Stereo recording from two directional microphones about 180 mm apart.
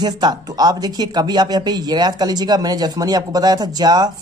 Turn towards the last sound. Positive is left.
turn(degrees=-20)  # may be behind; listen again after turning